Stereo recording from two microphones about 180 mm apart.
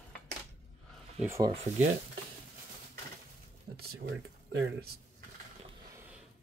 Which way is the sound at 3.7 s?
60° right (ahead or behind).